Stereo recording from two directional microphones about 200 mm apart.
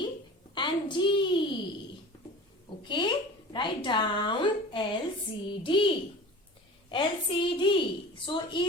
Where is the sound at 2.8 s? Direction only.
25° left (ahead or behind).